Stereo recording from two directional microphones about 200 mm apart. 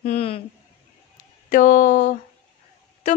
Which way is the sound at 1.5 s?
40° left (ahead or behind).